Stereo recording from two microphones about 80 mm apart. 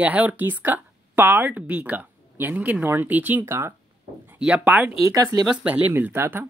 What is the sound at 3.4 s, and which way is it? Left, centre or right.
Speech, right.